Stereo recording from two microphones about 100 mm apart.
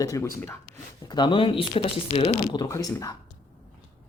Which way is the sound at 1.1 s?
50° left (ahead or behind).